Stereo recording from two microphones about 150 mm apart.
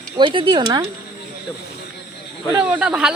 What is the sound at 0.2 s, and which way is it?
Speech, 35° right (ahead or behind).